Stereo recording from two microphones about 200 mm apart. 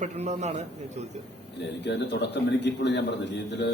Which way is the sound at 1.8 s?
60° left (ahead or behind).